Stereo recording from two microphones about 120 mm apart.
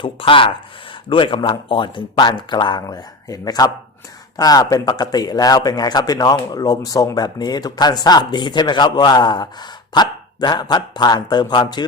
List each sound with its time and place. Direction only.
0.0 s speech: 45° left (ahead or behind)